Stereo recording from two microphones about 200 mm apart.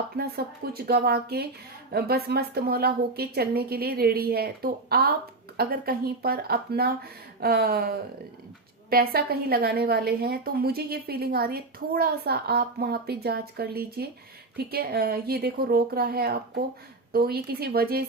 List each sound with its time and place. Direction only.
0.2 s a woman's voice: 50° right (ahead or behind)